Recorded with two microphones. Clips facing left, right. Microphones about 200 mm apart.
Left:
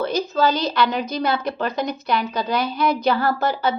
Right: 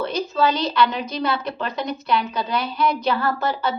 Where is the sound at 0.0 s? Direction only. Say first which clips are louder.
Left 2 dB; 40° left (ahead or behind).